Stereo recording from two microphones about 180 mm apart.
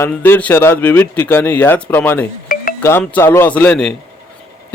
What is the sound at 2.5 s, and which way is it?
Music, 50° left (ahead or behind).